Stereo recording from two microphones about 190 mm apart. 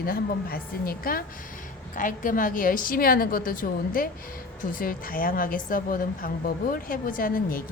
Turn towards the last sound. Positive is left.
turn(degrees=50)  # may be behind; listen again after turning